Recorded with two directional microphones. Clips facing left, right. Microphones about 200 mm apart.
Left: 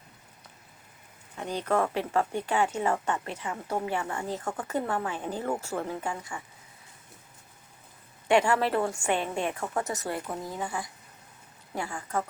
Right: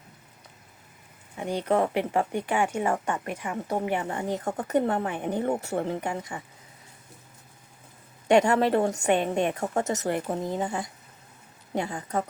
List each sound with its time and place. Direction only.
1.4 s speech: 15° right (ahead or behind)
8.3 s speech: 20° right (ahead or behind)